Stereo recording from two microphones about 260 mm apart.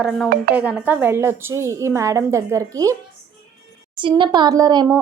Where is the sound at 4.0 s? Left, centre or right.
Centre.